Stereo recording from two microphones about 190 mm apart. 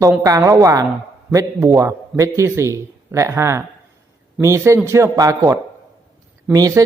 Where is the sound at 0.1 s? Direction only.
15° right (ahead or behind).